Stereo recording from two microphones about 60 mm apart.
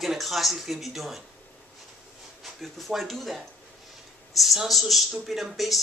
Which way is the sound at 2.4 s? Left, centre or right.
Centre.